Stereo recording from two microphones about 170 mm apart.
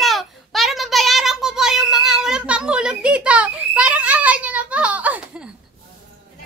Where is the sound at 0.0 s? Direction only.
Centre (ahead or behind).